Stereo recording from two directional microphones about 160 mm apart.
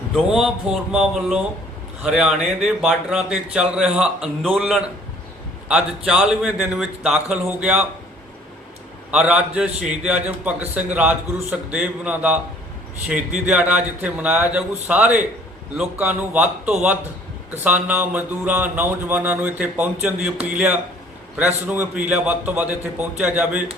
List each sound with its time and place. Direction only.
0.2 s a man's voice: 5° right (ahead or behind)
9.1 s mantra: 5° right (ahead or behind)
20.1 s a man's voice: centre (ahead or behind)
21.3 s mantra: 10° right (ahead or behind)